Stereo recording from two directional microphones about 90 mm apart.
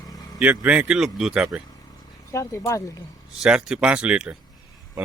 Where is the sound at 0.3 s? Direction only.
15° right (ahead or behind).